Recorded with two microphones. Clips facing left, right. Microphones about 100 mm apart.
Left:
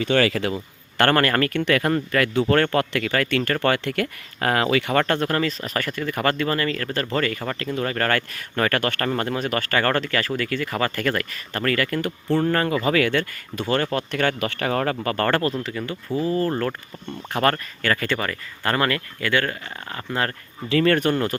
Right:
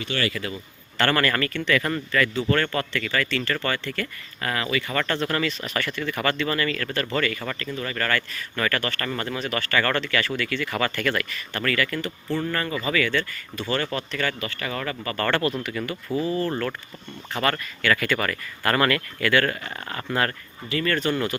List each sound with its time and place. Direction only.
0.9 s speech: 50° left (ahead or behind)
17.5 s speech: 35° left (ahead or behind)
18.2 s speech: 25° left (ahead or behind)
20.7 s speech: 85° left; by 21.1 s 70° left (ahead or behind)
21.1 s speech: 45° left (ahead or behind)